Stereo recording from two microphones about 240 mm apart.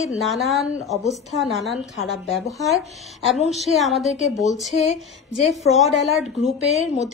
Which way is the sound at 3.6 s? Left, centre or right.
Centre.